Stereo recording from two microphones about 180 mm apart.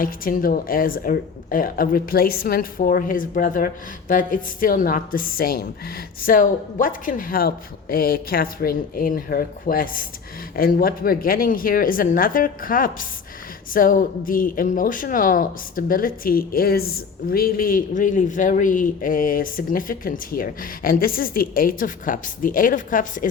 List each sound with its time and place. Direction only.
0.0 s speech: 55° left (ahead or behind)